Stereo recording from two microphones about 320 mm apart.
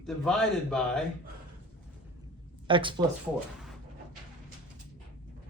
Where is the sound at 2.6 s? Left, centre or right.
Centre.